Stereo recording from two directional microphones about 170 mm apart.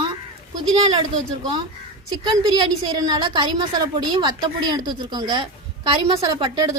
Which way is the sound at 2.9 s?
25° right (ahead or behind).